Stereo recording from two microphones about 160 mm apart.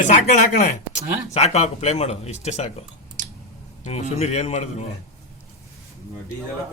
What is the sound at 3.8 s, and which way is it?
Speech, 45° left (ahead or behind).